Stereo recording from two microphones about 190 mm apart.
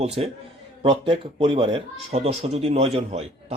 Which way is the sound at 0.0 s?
35° right (ahead or behind).